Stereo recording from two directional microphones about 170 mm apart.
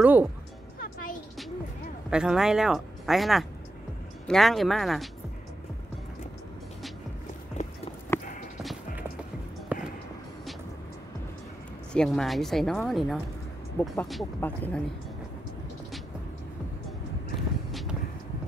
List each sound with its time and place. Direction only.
0.0 s speech: 10° right (ahead or behind)
0.7 s music: 55° left (ahead or behind)
2.0 s speech: 5° right (ahead or behind)
7.6 s clip-clop: 40° left (ahead or behind)
8.1 s clip-clop: 15° left (ahead or behind)
9.7 s music: 10° right (ahead or behind)
11.9 s speech: 5° left (ahead or behind)
13.8 s speech: 15° left (ahead or behind)
17.6 s a sound: centre (ahead or behind)